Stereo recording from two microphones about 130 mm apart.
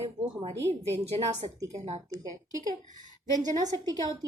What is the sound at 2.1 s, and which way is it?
A woman's voice, 25° right (ahead or behind).